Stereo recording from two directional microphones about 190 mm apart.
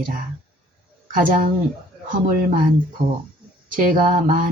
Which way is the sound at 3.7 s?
45° right (ahead or behind).